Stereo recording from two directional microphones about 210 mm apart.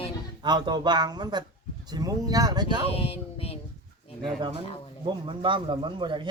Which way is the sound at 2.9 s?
30° left (ahead or behind).